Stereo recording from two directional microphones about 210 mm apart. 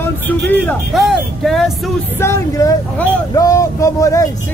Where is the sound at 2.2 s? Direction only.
15° left (ahead or behind).